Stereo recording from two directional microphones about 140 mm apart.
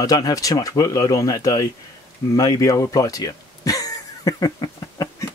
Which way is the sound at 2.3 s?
25° left (ahead or behind).